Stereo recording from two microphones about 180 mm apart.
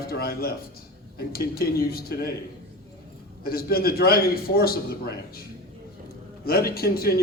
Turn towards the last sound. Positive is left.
turn(degrees=60)  # may be behind; listen again after turning